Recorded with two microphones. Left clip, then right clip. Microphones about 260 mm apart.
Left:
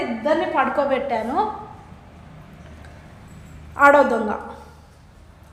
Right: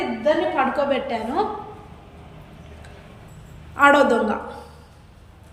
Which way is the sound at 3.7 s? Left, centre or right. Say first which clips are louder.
Left 1 dB; left.